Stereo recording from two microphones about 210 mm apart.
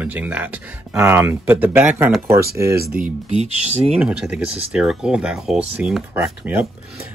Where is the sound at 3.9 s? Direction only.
5° right (ahead or behind).